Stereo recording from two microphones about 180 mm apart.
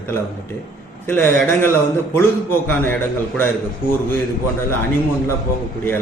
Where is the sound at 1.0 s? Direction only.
10° left (ahead or behind).